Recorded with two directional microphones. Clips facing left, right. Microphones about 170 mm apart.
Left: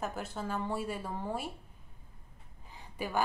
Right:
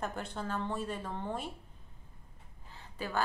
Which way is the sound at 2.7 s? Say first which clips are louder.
Left 2 dB; 15° left (ahead or behind).